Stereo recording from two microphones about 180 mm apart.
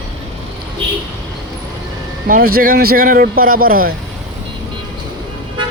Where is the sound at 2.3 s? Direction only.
55° right (ahead or behind).